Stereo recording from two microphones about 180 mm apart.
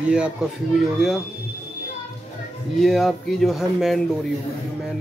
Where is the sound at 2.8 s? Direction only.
Centre (ahead or behind).